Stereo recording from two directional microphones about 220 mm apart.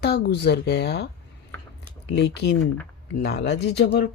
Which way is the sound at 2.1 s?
50° left (ahead or behind).